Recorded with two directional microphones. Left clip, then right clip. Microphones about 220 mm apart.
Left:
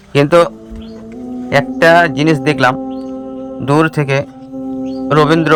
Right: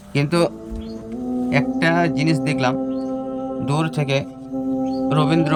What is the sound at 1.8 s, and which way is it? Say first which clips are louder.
Speech: left 12 dB; 50° left (ahead or behind).